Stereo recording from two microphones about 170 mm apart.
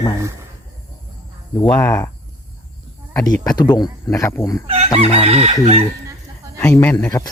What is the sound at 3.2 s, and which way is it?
Speech, 25° left (ahead or behind).